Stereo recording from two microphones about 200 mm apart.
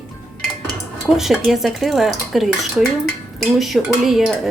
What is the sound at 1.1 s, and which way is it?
Speech, centre (ahead or behind).